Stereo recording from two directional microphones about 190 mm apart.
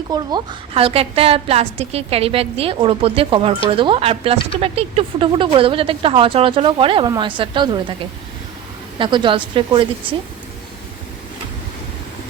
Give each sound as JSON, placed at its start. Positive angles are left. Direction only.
{"t": 0.1, "sound": "a woman's voice", "side_deg": -20}
{"t": 9.0, "sound": "speech", "side_deg": -25}